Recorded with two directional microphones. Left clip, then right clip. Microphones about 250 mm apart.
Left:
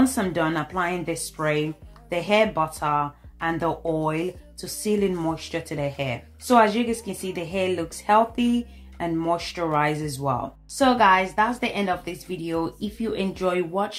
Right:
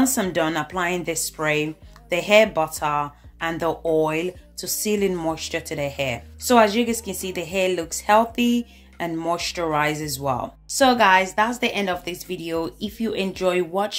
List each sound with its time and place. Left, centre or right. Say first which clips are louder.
0.0 s speech: right 1 dB; right